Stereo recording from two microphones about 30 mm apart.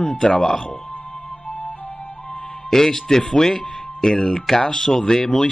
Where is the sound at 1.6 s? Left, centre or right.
Left.